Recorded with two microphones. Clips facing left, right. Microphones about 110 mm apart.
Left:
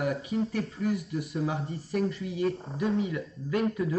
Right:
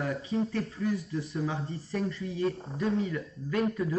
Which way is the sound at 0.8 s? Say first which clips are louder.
Left 1 dB; 15° left (ahead or behind).